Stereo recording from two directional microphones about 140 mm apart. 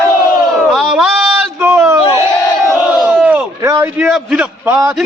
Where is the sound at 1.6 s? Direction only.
15° right (ahead or behind).